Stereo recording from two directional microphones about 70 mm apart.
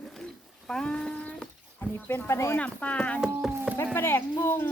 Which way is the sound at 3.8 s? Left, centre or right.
Left.